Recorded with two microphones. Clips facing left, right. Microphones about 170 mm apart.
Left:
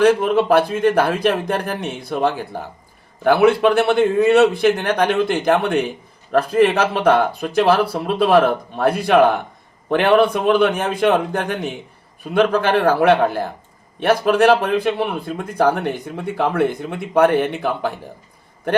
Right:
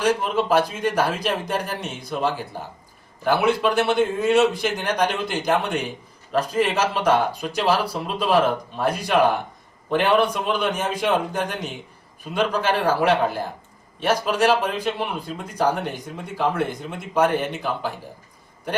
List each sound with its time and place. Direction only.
0.0 s a man's voice: 60° left (ahead or behind)